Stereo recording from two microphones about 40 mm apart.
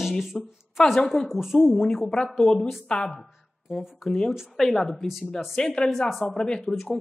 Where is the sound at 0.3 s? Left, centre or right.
Centre.